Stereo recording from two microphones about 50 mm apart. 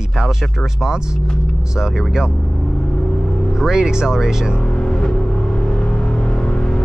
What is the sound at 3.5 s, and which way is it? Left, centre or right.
Speech, centre.